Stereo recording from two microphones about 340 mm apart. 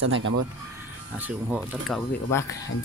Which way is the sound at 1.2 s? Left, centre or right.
Centre.